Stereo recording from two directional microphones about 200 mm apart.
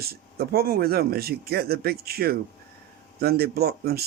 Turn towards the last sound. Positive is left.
turn(degrees=-50)  # may be behind; listen again after turning